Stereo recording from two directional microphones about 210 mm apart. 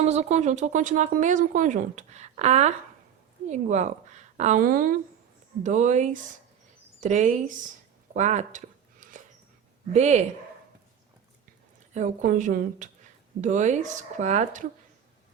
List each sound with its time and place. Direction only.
0.0 s speech: 35° right (ahead or behind)
8.1 s a sound: 35° right (ahead or behind)
9.9 s speech: 30° right (ahead or behind)
11.9 s speech: 35° right (ahead or behind)